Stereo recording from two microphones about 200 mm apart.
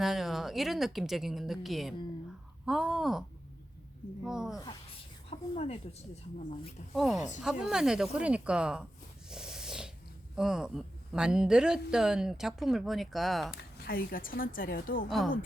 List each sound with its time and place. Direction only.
0.0 s speech: centre (ahead or behind)
5.3 s speech: 30° left (ahead or behind)
6.9 s speech: centre (ahead or behind)
9.3 s snort: 5° right (ahead or behind)
10.3 s speech: 5° right (ahead or behind)
13.8 s a woman's voice: 45° left (ahead or behind)